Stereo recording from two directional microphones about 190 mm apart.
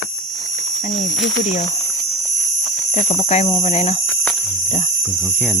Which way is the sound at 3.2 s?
35° left (ahead or behind).